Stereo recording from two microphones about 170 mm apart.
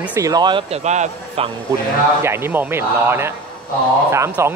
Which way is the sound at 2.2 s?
15° right (ahead or behind).